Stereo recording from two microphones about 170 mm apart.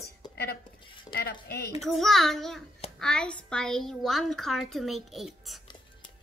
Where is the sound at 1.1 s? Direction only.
65° left (ahead or behind).